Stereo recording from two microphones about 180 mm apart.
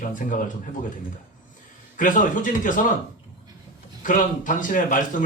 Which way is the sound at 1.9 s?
45° left (ahead or behind).